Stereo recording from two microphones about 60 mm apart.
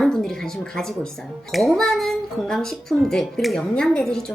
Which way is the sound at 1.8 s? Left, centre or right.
Centre.